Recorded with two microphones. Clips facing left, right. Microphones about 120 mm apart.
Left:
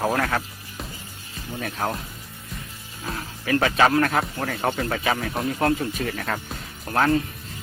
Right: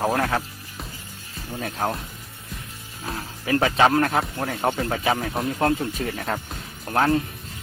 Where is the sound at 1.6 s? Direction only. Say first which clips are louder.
Right 1 dB; 15° right (ahead or behind).